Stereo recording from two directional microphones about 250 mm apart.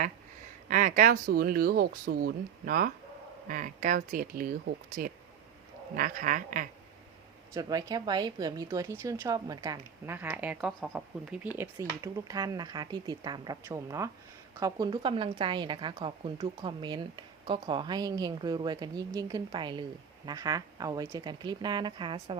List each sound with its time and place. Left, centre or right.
0.7 s speech: right
7.5 s a woman's voice: centre